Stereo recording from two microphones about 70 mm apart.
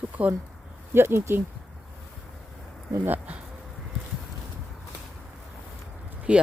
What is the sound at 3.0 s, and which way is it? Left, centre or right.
Speech, right.